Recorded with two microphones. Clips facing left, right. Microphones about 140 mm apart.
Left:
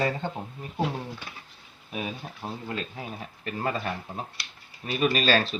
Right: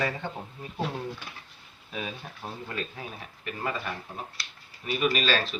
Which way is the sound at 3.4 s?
40° left (ahead or behind).